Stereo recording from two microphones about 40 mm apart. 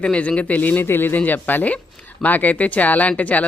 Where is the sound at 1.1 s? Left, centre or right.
Left.